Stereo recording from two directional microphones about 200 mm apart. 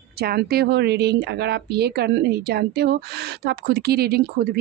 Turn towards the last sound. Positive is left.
turn(degrees=-50)  # may be behind; listen again after turning